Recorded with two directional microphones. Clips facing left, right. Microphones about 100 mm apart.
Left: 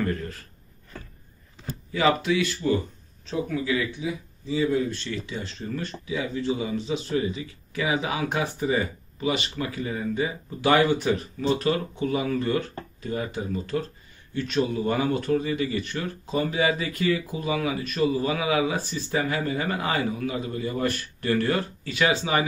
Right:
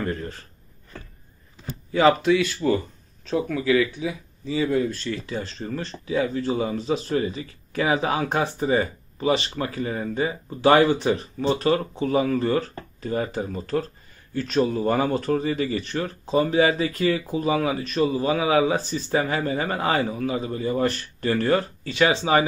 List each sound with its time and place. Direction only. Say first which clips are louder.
0.0 s speech: even; 25° right (ahead or behind)
1.9 s speech: right 5 dB; 40° right (ahead or behind)
2.6 s speech: right 1 dB; 55° right (ahead or behind)
3.3 s speech: right 4 dB; 75° right (ahead or behind)
4.9 s speech: right 3 dB; 40° right (ahead or behind)